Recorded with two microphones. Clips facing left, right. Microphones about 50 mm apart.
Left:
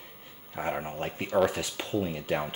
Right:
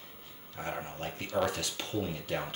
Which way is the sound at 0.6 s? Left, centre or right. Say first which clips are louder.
Left 6 dB; centre.